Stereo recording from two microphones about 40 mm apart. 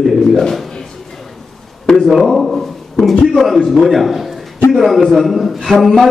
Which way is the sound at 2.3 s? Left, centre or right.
Centre.